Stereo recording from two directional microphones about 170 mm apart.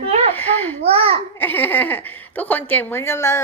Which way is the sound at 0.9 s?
35° right (ahead or behind).